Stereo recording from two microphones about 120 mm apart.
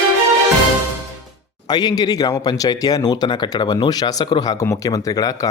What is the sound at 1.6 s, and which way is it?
Speech, 35° left (ahead or behind).